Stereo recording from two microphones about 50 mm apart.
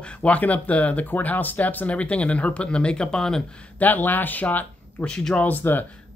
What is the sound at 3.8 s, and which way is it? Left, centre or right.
Speech, left.